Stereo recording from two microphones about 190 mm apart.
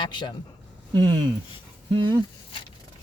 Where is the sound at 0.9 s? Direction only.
25° right (ahead or behind).